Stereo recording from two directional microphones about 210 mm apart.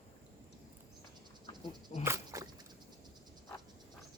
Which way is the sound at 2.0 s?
15° right (ahead or behind).